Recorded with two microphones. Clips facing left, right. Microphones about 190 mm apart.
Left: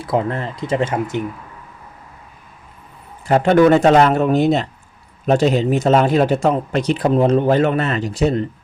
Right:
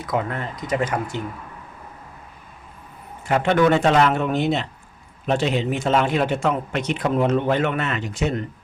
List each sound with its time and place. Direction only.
0.0 s speech: 30° left (ahead or behind)
3.2 s a man's voice: 40° left (ahead or behind)